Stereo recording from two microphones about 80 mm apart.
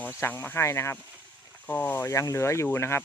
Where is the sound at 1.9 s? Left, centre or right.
Left.